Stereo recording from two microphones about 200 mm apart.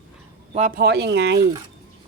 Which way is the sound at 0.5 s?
40° right (ahead or behind).